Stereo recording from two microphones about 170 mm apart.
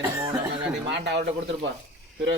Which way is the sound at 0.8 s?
90° right.